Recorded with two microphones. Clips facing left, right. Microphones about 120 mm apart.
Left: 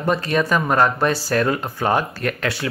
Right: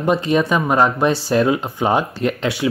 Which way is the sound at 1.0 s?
25° right (ahead or behind).